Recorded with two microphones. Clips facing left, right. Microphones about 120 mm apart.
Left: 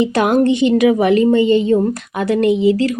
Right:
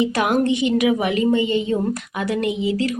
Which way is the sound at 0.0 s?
30° left (ahead or behind).